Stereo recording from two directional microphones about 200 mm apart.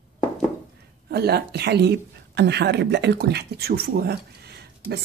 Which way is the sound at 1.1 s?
55° right (ahead or behind).